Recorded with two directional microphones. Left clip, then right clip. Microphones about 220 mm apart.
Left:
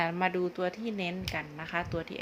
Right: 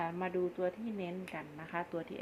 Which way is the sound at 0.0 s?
40° left (ahead or behind).